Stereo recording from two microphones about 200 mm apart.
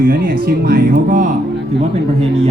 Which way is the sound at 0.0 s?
45° right (ahead or behind).